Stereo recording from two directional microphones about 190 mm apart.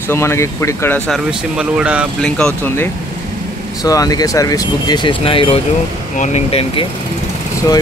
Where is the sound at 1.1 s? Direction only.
5° right (ahead or behind).